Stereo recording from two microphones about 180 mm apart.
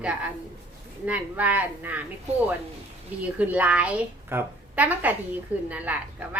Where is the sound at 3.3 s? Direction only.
10° right (ahead or behind).